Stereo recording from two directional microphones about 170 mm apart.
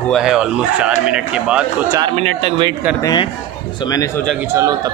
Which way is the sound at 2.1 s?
35° right (ahead or behind).